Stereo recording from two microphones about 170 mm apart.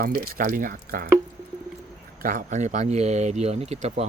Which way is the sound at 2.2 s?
55° right (ahead or behind).